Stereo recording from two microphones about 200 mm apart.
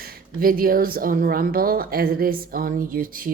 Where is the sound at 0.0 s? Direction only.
45° right (ahead or behind).